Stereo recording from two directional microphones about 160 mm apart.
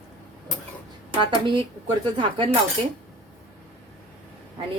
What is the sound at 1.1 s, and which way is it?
Speech, 30° right (ahead or behind).